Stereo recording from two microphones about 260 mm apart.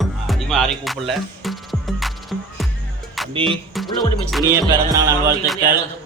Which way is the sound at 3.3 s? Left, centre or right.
Centre.